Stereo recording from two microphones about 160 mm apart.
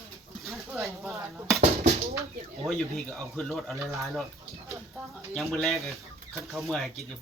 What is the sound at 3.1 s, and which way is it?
Speech, 5° left (ahead or behind).